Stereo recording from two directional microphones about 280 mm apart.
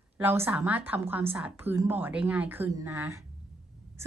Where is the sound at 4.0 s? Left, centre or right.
Centre.